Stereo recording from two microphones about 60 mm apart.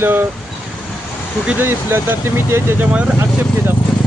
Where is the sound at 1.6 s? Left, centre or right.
Right.